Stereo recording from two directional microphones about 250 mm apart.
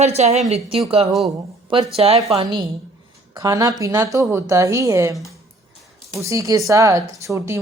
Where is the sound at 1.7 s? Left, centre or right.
Right.